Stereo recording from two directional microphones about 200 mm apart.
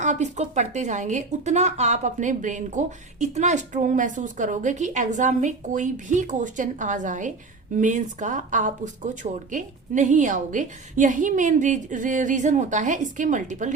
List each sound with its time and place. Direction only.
0.0 s speech: 35° right (ahead or behind)